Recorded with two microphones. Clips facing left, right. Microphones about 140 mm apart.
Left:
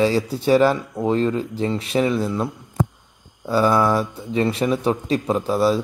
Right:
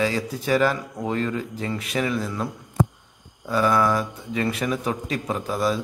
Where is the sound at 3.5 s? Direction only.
30° left (ahead or behind).